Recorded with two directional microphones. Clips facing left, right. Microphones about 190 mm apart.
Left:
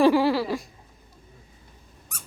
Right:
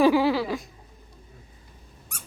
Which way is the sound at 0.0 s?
Centre (ahead or behind).